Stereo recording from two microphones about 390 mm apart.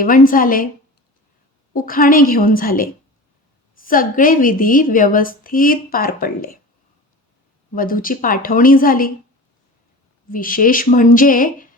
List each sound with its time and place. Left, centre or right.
0.0 s a woman's voice: left
1.7 s a woman's voice: left
7.8 s a woman's voice: left
10.2 s a woman's voice: left